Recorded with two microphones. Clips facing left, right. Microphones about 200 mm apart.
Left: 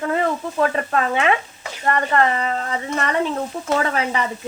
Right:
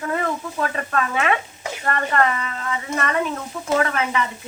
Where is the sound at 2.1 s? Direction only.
35° left (ahead or behind).